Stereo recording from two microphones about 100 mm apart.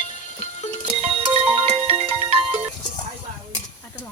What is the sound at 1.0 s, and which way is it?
Music, 80° right.